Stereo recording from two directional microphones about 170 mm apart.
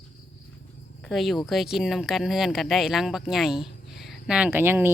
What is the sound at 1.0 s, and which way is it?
Speech, centre (ahead or behind).